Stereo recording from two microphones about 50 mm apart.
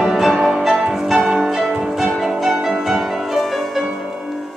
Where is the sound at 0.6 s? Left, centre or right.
Centre.